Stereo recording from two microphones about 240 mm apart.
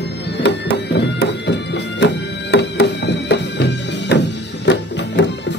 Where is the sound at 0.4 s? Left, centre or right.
Left.